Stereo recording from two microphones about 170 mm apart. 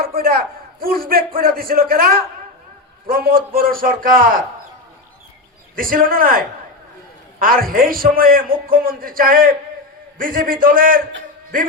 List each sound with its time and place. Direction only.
0.2 s a man's voice: 60° right (ahead or behind)
5.7 s a man's voice: 55° right (ahead or behind)